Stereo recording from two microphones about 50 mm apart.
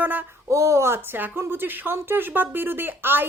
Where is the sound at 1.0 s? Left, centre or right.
Right.